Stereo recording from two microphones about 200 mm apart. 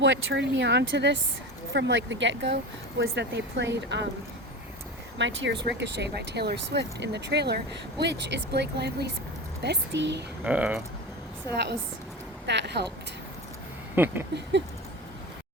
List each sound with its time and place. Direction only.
0.0 s speech: 65° right (ahead or behind)
5.1 s speech: 65° right (ahead or behind)
10.4 s speech: 5° right (ahead or behind)
12.5 s speech: 60° right (ahead or behind)
13.9 s speech: 10° right (ahead or behind)